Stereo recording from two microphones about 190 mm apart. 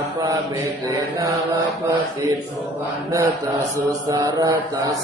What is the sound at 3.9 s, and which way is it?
Mantra, 20° right (ahead or behind).